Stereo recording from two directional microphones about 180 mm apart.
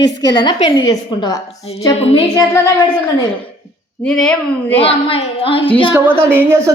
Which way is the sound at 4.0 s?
5° left (ahead or behind).